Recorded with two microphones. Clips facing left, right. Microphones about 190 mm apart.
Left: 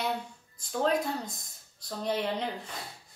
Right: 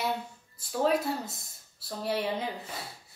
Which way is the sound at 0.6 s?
5° right (ahead or behind).